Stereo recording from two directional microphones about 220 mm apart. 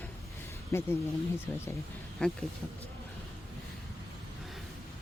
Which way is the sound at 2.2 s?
5° left (ahead or behind).